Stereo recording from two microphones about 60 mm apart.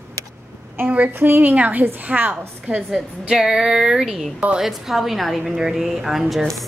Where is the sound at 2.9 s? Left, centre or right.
Centre.